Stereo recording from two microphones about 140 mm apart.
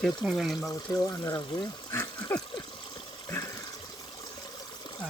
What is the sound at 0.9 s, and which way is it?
Speech, 25° left (ahead or behind).